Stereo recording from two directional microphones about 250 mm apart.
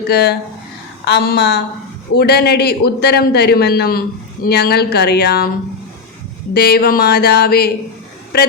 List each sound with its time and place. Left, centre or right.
0.1 s a man's voice: left
6.5 s a man's voice: left